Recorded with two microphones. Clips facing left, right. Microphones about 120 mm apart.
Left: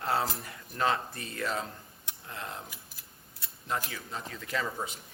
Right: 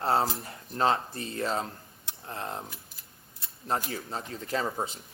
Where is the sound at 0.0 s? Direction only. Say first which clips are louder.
Right 4 dB; 30° right (ahead or behind).